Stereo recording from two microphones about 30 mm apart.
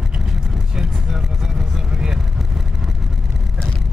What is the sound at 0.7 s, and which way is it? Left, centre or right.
Vehicle, centre.